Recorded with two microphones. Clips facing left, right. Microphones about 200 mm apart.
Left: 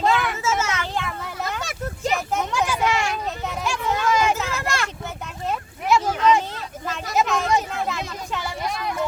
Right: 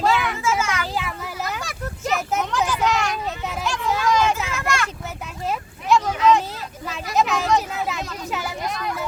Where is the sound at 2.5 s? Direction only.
10° left (ahead or behind).